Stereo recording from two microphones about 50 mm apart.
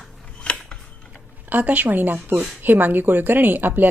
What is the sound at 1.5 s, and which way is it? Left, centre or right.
A woman's voice, right.